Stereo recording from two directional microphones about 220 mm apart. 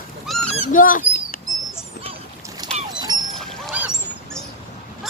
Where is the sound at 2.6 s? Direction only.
20° right (ahead or behind).